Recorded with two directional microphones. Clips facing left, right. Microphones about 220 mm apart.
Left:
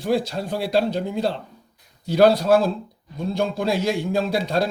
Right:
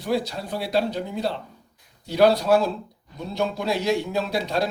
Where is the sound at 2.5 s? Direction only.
50° left (ahead or behind).